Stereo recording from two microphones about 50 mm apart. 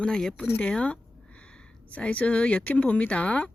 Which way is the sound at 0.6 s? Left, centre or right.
Left.